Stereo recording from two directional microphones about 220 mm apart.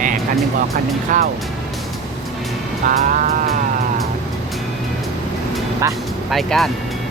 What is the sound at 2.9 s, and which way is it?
Music, 35° right (ahead or behind).